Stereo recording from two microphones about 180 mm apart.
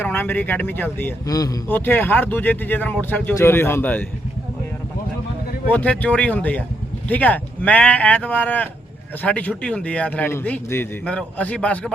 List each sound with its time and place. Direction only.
0.0 s a man's voice: 10° left (ahead or behind)
5.7 s a man's voice: 10° left (ahead or behind)